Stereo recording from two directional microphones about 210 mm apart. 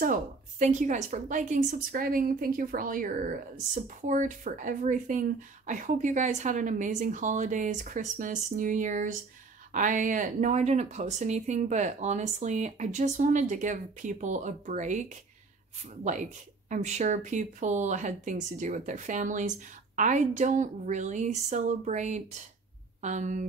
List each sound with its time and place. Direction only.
0.0 s speech: 35° right (ahead or behind)